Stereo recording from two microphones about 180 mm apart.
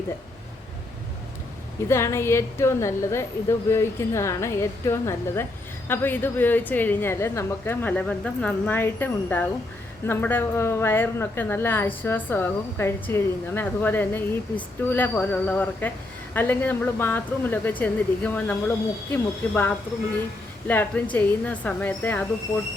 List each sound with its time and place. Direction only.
1.9 s a woman's voice: 15° left (ahead or behind)